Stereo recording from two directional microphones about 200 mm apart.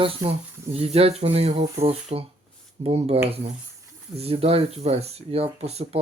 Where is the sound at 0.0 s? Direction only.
25° right (ahead or behind).